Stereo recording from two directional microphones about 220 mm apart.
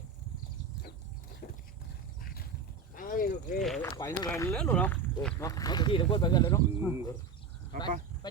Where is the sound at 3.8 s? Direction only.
15° left (ahead or behind).